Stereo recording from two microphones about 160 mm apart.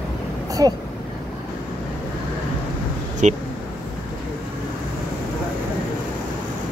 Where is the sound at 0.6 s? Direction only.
20° right (ahead or behind).